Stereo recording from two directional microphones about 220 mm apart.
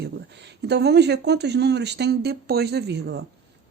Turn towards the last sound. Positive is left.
turn(degrees=-50)  # may be behind; listen again after turning